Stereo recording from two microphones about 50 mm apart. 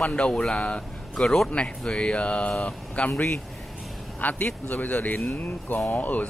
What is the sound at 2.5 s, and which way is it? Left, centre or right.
Speech, centre.